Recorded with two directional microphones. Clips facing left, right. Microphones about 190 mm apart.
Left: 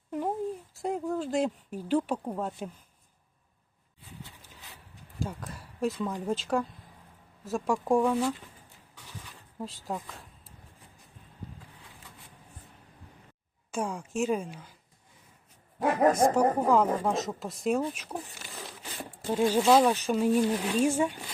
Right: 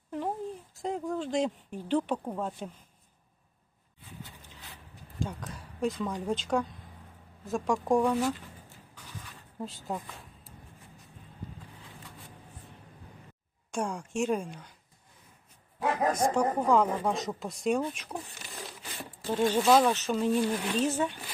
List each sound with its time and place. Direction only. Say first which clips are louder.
0.8 s speech: left 1 dB; 5° left (ahead or behind)
5.2 s speech: even; centre (ahead or behind)
9.6 s speech: even; centre (ahead or behind)
13.7 s speech: even; 5° left (ahead or behind)
15.8 s speech: left 4 dB; 45° left (ahead or behind)
16.3 s speech: left 2 dB; 5° left (ahead or behind)